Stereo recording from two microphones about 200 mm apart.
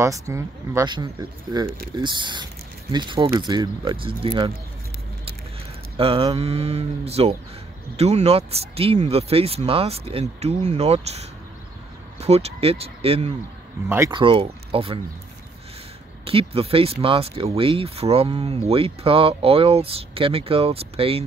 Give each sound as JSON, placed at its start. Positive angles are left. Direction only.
{"t": 0.0, "sound": "speech", "side_deg": -15}
{"t": 5.9, "sound": "speech", "side_deg": -30}
{"t": 13.8, "sound": "speech", "side_deg": -10}
{"t": 14.1, "sound": "speech", "side_deg": -25}
{"t": 16.3, "sound": "speech", "side_deg": -30}